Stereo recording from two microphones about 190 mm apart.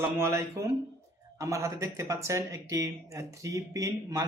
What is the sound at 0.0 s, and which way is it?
Speech, 15° right (ahead or behind).